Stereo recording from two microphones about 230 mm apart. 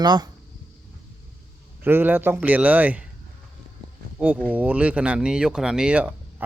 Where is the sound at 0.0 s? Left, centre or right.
Centre.